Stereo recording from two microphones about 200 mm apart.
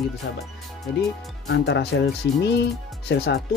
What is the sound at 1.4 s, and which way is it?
Speech, 60° left (ahead or behind).